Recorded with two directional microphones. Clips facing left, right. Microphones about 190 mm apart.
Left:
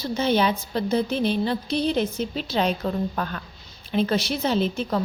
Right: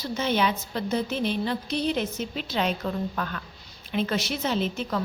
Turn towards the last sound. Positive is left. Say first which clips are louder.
# left 4 dB
turn(degrees=35)  # may be behind; listen again after turning